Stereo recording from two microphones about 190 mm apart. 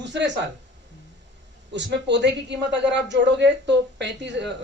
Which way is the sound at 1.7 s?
65° right (ahead or behind).